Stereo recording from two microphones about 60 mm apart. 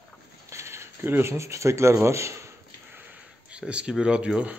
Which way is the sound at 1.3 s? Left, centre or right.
Right.